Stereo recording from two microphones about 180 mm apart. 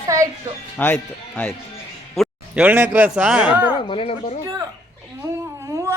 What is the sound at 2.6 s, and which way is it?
A man's voice, 10° right (ahead or behind).